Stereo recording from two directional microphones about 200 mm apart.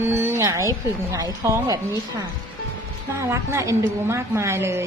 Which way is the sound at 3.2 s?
15° right (ahead or behind).